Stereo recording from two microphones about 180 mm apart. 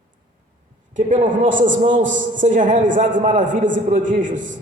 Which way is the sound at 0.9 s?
45° right (ahead or behind).